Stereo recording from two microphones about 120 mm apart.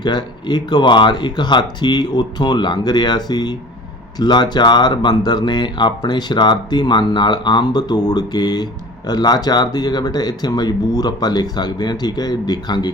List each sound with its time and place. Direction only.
0.0 s speech: 35° left (ahead or behind)